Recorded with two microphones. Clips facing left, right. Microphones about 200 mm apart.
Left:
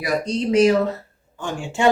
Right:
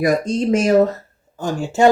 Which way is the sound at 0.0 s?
45° right (ahead or behind).